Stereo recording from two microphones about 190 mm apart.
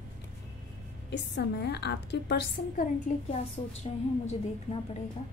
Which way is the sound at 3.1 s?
45° left (ahead or behind).